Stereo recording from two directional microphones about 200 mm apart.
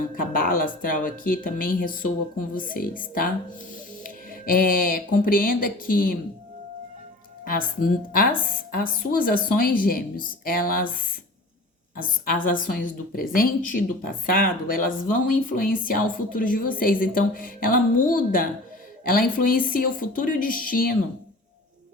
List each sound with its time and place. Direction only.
0.2 s a woman's voice: 45° left (ahead or behind)
7.4 s a woman's voice: 45° left (ahead or behind)